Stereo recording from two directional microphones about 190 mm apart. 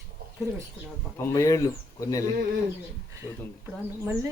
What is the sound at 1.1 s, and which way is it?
Speech, 15° left (ahead or behind).